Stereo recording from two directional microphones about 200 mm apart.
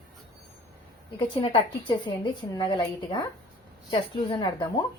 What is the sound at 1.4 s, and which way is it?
Speech, 25° left (ahead or behind).